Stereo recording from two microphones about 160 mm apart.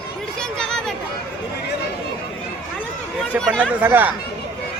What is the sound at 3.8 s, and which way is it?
Speech, 10° right (ahead or behind).